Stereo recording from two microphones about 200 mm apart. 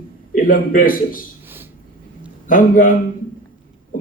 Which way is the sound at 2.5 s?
40° left (ahead or behind).